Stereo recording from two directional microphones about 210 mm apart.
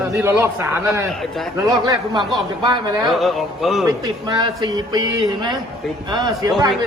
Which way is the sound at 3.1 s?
Centre (ahead or behind).